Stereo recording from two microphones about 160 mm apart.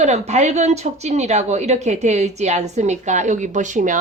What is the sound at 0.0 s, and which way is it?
A woman's voice, 45° right (ahead or behind).